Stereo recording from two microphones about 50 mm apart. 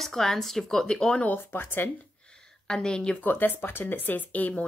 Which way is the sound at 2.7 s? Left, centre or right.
Centre.